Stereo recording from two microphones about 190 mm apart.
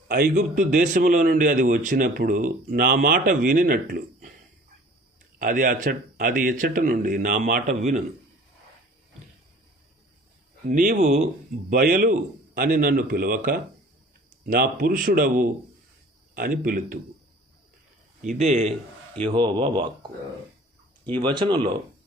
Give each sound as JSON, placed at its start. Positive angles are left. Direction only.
{"t": 0.3, "sound": "a man's voice", "side_deg": -40}
{"t": 5.4, "sound": "a man's voice", "side_deg": -45}
{"t": 10.7, "sound": "a man's voice", "side_deg": -40}
{"t": 18.3, "sound": "speech", "side_deg": -35}
{"t": 21.2, "sound": "speech", "side_deg": -25}